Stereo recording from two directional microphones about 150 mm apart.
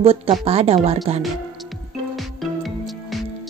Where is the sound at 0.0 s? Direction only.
40° right (ahead or behind).